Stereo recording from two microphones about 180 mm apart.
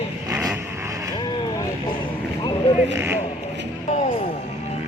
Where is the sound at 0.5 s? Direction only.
15° right (ahead or behind).